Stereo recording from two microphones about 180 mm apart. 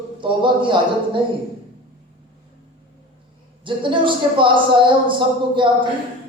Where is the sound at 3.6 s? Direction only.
30° right (ahead or behind).